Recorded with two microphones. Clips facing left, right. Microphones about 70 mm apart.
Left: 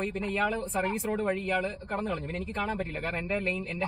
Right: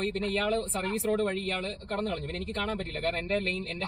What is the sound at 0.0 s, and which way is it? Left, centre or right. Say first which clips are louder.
Speech: even; centre.